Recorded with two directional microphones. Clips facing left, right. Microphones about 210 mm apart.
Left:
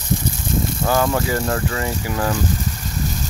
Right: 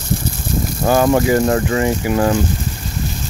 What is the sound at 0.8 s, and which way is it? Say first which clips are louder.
Speech: right 7 dB; 25° right (ahead or behind).